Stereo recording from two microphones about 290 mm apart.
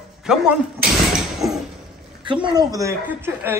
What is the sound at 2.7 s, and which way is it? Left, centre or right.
Speech, centre.